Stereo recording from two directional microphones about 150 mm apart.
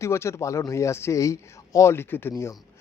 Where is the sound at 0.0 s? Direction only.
20° left (ahead or behind).